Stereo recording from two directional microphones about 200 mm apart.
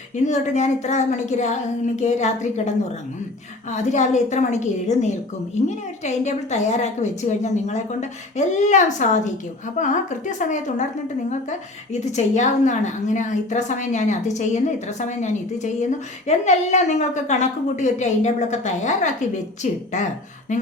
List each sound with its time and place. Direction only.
0.3 s a woman's voice: 35° left (ahead or behind)
3.7 s a woman's voice: 35° left (ahead or behind)